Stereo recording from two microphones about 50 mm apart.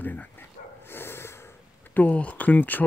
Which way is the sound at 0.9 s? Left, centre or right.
Left.